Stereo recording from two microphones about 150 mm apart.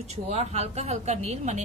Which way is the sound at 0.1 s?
45° right (ahead or behind).